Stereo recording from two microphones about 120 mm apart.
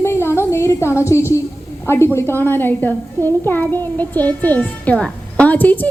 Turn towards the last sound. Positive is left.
turn(degrees=15)  # may be behind; listen again after turning